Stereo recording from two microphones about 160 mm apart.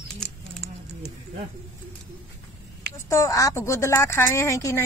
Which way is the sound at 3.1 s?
20° left (ahead or behind).